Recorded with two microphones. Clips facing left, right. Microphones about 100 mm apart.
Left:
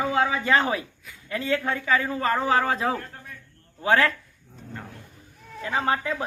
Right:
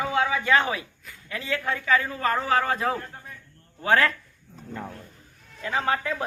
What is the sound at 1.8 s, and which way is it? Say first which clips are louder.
Speech: even; 25° left (ahead or behind).